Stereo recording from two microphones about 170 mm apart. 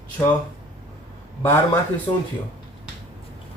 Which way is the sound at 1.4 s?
15° left (ahead or behind).